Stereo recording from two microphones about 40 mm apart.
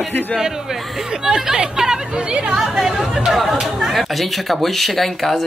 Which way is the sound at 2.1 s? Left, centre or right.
Right.